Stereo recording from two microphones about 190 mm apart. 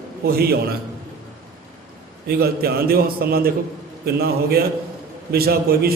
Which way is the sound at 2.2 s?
55° right (ahead or behind).